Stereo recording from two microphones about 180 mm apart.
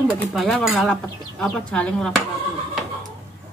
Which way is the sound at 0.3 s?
Centre (ahead or behind).